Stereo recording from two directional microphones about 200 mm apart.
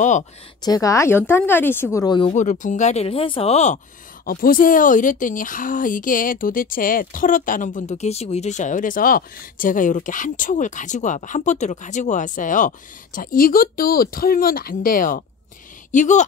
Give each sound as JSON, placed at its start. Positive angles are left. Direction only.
{"t": 0.6, "sound": "speech", "side_deg": 20}
{"t": 2.3, "sound": "a woman's voice", "side_deg": 40}
{"t": 4.3, "sound": "a woman's voice", "side_deg": 45}